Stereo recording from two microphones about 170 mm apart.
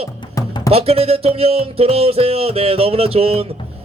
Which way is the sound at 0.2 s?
25° left (ahead or behind).